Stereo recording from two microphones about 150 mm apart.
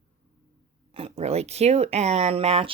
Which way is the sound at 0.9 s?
40° right (ahead or behind).